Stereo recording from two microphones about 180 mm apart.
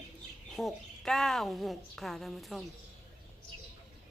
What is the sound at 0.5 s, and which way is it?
A woman's voice, centre (ahead or behind).